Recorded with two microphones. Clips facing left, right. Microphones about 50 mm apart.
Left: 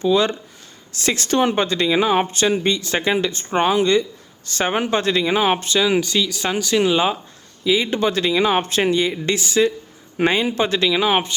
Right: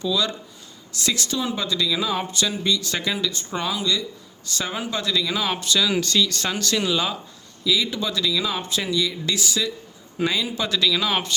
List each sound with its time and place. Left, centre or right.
0.0 s speech: left
6.0 s speech: centre